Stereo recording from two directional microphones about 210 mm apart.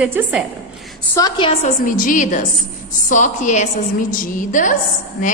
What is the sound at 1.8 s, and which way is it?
A woman's voice, 40° left (ahead or behind).